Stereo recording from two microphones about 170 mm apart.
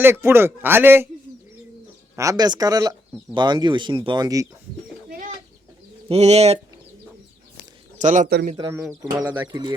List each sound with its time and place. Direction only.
0.0 s a man's voice: 15° right (ahead or behind)
2.1 s speech: 20° right (ahead or behind)
6.1 s speech: 40° right (ahead or behind)
7.9 s speech: 45° right (ahead or behind)
8.5 s speech: 20° right (ahead or behind)
9.2 s a man's voice: 10° right (ahead or behind)
9.5 s speech: 30° right (ahead or behind)